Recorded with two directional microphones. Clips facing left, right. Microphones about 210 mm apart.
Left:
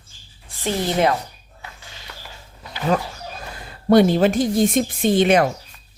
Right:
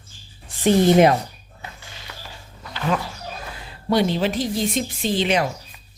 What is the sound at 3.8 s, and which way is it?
A woman's voice, 50° left (ahead or behind).